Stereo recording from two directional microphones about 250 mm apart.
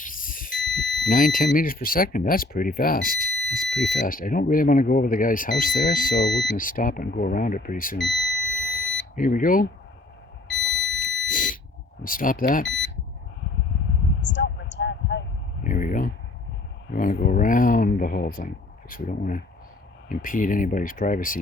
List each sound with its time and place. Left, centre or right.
0.0 s smoke detector: left
1.1 s speech: left
9.1 s speech: left
10.5 s smoke detector: left
12.0 s speech: left
12.6 s speech: left
14.3 s a sound: left
15.6 s speech: left